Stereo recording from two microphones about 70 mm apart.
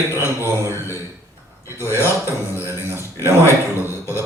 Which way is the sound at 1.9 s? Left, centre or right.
Left.